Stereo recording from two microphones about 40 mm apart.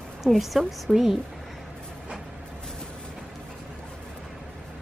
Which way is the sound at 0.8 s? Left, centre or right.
Centre.